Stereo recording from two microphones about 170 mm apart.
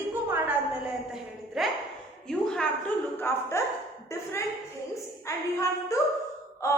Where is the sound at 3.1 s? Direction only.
15° left (ahead or behind).